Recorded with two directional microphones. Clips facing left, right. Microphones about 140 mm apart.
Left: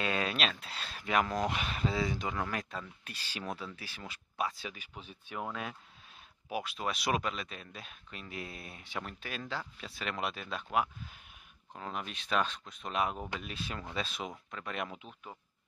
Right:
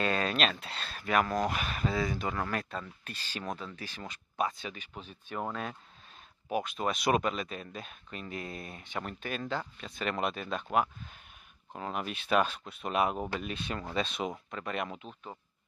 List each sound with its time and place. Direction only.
0.0 s speech: 10° left (ahead or behind)
0.7 s speech: 10° left (ahead or behind)
5.3 s speech: 40° right (ahead or behind)
6.9 s speech: centre (ahead or behind)
11.8 s speech: 5° right (ahead or behind)